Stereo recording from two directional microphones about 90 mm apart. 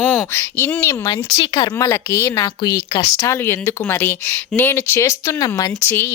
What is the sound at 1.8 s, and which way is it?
Speech, 30° left (ahead or behind).